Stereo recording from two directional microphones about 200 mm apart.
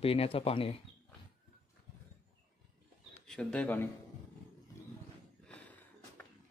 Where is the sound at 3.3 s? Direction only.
5° left (ahead or behind).